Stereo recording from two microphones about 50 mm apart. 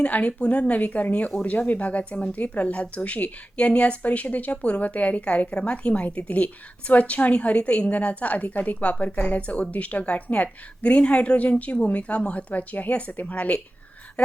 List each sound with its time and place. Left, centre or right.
0.0 s a woman's voice: left